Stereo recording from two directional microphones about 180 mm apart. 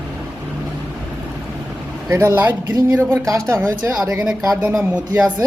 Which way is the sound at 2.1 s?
15° right (ahead or behind).